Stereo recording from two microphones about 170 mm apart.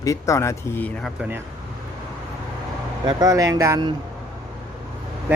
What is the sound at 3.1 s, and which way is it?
Speech, 20° right (ahead or behind).